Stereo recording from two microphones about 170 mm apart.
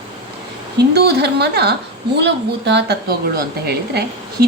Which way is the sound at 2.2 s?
90° right.